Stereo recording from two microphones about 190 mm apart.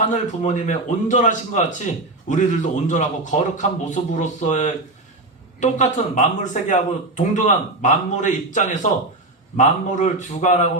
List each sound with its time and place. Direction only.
0.1 s a man's voice: 40° left (ahead or behind)